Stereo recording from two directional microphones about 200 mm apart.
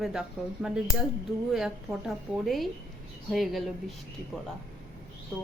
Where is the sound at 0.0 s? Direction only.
5° right (ahead or behind).